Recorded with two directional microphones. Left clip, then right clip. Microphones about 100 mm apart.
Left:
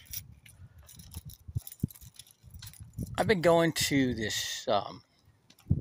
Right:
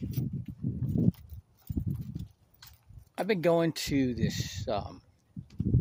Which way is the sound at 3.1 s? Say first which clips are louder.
Left 2 dB; 25° right (ahead or behind).